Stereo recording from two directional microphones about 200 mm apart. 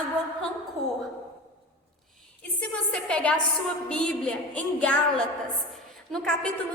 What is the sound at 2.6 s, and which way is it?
A woman's voice, 5° left (ahead or behind).